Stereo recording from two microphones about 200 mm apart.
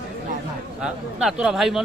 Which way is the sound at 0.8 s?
5° right (ahead or behind).